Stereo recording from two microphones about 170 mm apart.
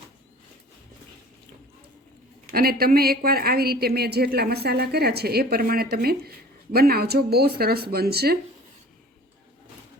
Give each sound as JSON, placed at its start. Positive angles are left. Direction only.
{"t": 2.5, "sound": "a woman's voice", "side_deg": -60}